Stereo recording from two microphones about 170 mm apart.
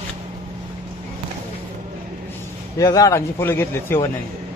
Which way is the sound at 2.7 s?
20° left (ahead or behind).